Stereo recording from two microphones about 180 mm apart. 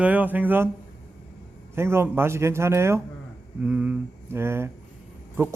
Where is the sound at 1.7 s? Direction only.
15° right (ahead or behind).